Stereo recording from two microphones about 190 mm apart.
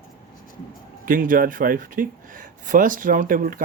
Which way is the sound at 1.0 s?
45° right (ahead or behind).